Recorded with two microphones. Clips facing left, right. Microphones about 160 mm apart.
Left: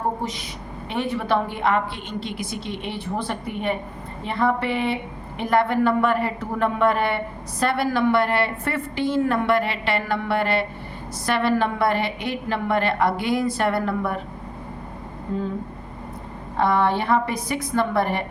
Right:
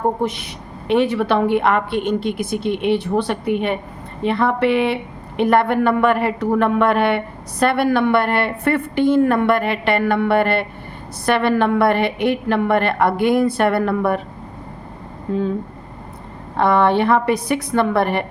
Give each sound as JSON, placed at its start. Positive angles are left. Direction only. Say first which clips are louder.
{"t": 0.2, "sound": "a woman's voice", "louder": "right 7 dB", "side_deg": -65}
{"t": 15.3, "sound": "a woman's voice", "louder": "right 6 dB", "side_deg": -75}
{"t": 16.6, "sound": "a woman's voice", "louder": "right 5 dB", "side_deg": -65}